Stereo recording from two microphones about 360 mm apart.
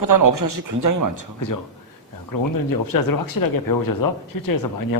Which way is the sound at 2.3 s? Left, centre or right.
Left.